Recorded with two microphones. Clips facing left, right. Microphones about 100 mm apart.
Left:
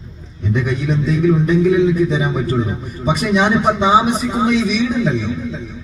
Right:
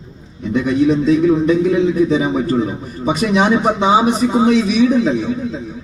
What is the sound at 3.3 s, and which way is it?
A man's voice, 20° right (ahead or behind).